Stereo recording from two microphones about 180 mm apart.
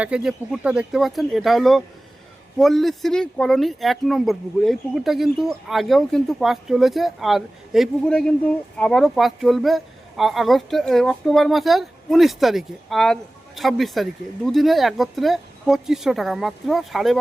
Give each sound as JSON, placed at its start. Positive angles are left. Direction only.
{"t": 0.0, "sound": "speech", "side_deg": -5}